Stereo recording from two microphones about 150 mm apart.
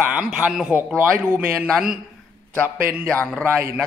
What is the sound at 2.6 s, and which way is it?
Speech, 15° right (ahead or behind).